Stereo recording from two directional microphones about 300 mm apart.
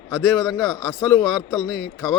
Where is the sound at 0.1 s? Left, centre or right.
Centre.